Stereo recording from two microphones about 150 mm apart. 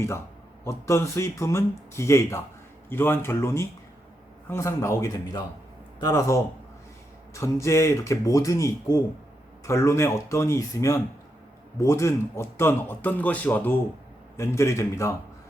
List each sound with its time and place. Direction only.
0.6 s speech: 20° left (ahead or behind)